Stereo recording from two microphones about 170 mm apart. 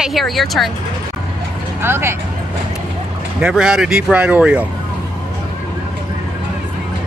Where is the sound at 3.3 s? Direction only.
5° right (ahead or behind).